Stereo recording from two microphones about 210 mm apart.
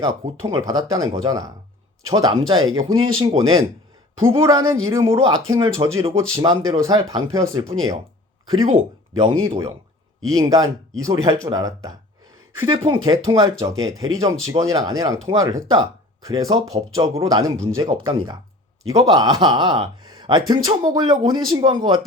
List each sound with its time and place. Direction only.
0.0 s speech: 15° right (ahead or behind)
13.1 s speech: 15° right (ahead or behind)